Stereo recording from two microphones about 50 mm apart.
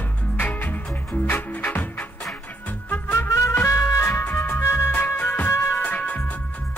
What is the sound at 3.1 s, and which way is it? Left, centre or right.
Music, left.